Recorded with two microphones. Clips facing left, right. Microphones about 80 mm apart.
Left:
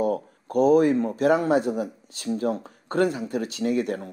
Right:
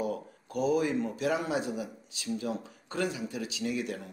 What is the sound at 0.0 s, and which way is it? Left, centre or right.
Speech, left.